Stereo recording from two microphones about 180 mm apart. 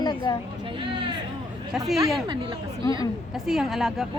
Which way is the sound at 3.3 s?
Centre (ahead or behind).